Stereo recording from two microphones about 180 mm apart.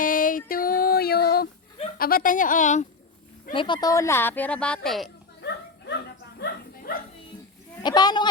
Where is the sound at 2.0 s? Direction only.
55° left (ahead or behind).